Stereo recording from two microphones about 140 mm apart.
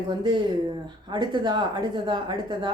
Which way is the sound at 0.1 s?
35° right (ahead or behind).